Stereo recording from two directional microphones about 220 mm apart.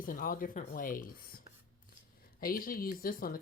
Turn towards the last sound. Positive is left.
turn(degrees=40)  # may be behind; listen again after turning